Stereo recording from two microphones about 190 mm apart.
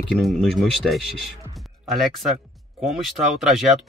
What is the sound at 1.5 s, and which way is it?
Music, centre (ahead or behind).